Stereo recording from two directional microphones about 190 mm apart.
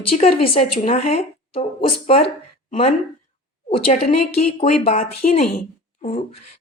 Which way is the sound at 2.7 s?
30° left (ahead or behind).